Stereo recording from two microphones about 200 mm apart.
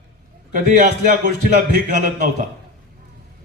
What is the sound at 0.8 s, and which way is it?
Speech, 45° right (ahead or behind).